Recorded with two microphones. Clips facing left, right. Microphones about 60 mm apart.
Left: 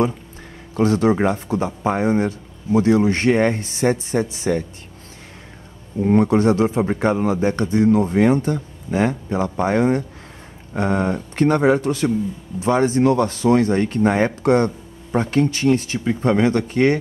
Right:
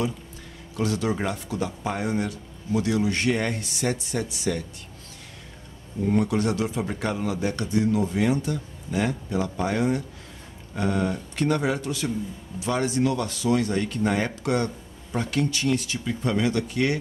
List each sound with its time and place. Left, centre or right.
0.7 s a man's voice: left
5.9 s a man's voice: left